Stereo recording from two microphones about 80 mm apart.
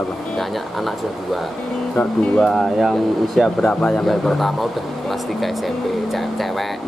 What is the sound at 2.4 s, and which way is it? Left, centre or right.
Speech, centre.